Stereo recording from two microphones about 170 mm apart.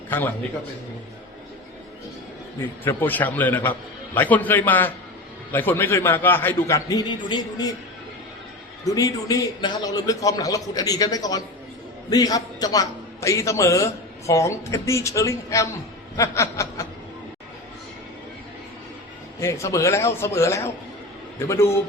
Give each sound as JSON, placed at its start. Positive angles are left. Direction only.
{"t": 0.1, "sound": "a man's voice", "side_deg": 10}
{"t": 2.6, "sound": "a man's voice", "side_deg": 10}
{"t": 8.8, "sound": "a man's voice", "side_deg": 20}
{"t": 19.4, "sound": "a man's voice", "side_deg": 15}